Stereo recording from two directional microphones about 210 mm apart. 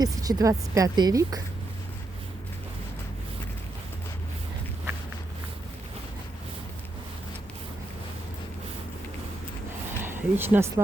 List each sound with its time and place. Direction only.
0.0 s speech: 15° right (ahead or behind)
10.0 s speech: 10° right (ahead or behind)